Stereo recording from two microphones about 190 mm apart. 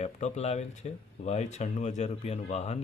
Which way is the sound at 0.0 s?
35° left (ahead or behind).